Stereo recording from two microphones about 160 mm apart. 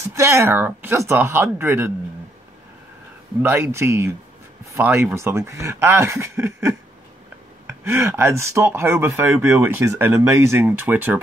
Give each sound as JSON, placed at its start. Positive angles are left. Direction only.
{"t": 0.0, "sound": "speech", "side_deg": -15}
{"t": 3.4, "sound": "speech", "side_deg": -15}